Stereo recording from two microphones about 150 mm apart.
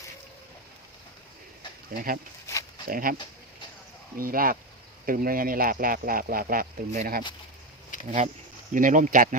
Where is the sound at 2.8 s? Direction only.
70° right (ahead or behind).